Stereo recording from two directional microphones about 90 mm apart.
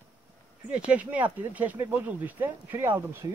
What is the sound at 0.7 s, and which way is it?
Speech, 15° right (ahead or behind).